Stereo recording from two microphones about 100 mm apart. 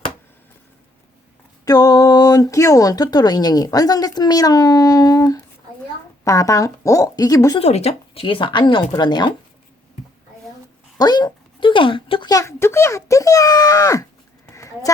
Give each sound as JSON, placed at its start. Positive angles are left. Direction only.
{"t": 1.6, "sound": "speech", "side_deg": 40}
{"t": 7.6, "sound": "speech", "side_deg": 90}
{"t": 10.9, "sound": "speech", "side_deg": 45}
{"t": 12.3, "sound": "speech", "side_deg": 30}
{"t": 14.5, "sound": "a sound", "side_deg": 35}